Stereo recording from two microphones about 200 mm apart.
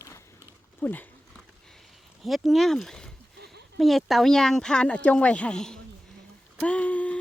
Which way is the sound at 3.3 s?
55° right (ahead or behind).